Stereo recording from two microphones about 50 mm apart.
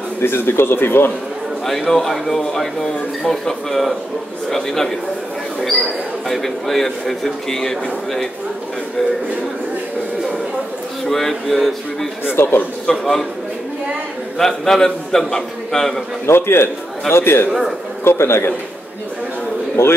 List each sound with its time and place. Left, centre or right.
0.2 s speech: left
1.7 s speech: centre
6.2 s speech: centre
11.1 s speech: centre
12.3 s speech: left
12.8 s speech: centre
14.4 s speech: centre
16.3 s a man's voice: left
17.5 s speech: centre
18.0 s a man's voice: left